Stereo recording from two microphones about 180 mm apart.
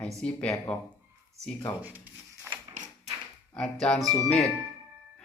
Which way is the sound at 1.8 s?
10° right (ahead or behind).